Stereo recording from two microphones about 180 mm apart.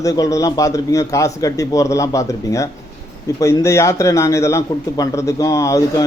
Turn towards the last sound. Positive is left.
turn(degrees=20)  # may be behind; listen again after turning